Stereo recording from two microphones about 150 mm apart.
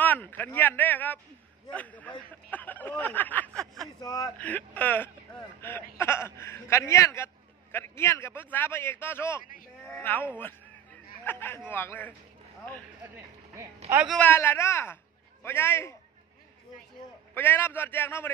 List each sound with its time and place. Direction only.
0.0 s speech: 10° left (ahead or behind)
4.0 s a man's voice: 25° left (ahead or behind)
4.4 s speech: 10° left (ahead or behind)
14.0 s speech: 10° left (ahead or behind)
17.3 s speech: 15° left (ahead or behind)